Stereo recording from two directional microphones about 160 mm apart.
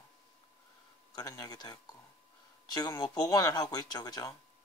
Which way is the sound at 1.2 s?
25° left (ahead or behind).